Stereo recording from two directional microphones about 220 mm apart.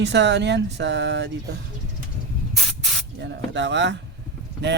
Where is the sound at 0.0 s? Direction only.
50° right (ahead or behind).